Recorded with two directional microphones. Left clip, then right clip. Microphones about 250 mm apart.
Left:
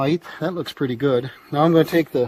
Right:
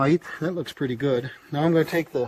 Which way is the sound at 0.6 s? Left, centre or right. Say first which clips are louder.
Left 4 dB; centre.